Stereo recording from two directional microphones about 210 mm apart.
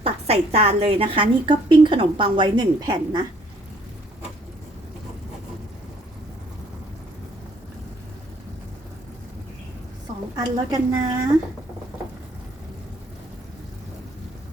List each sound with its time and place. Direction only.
0.0 s a woman's voice: 30° right (ahead or behind)
10.3 s speech: 15° right (ahead or behind)